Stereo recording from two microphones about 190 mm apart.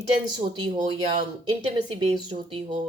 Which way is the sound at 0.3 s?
20° right (ahead or behind).